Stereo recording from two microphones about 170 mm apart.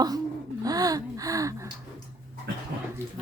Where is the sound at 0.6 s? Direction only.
20° right (ahead or behind).